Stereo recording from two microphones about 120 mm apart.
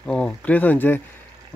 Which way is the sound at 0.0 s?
10° left (ahead or behind).